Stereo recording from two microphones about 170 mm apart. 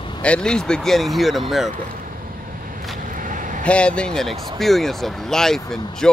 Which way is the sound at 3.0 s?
50° right (ahead or behind).